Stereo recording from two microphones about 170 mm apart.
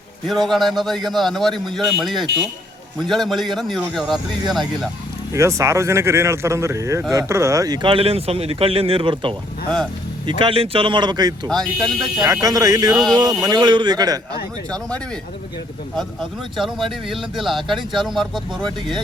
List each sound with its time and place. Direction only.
0.4 s speech: centre (ahead or behind)
5.3 s speech: 15° right (ahead or behind)
11.4 s speech: 5° left (ahead or behind)
12.2 s speech: 20° right (ahead or behind)
14.7 s speech: 5° left (ahead or behind)
16.6 s speech: centre (ahead or behind)